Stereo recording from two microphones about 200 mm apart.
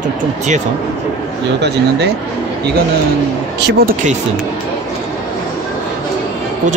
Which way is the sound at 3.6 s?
55° right (ahead or behind).